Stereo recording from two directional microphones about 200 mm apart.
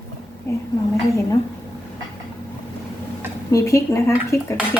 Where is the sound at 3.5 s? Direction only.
15° left (ahead or behind).